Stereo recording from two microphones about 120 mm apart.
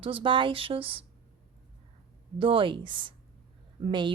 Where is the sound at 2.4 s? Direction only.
45° right (ahead or behind).